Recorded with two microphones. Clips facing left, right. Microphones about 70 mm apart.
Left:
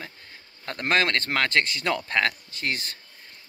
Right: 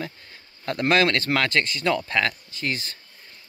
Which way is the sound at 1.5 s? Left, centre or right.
Left.